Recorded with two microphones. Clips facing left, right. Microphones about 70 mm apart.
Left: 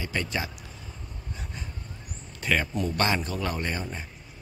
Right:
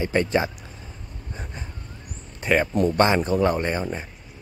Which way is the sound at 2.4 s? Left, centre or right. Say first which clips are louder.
Right 7 dB; right.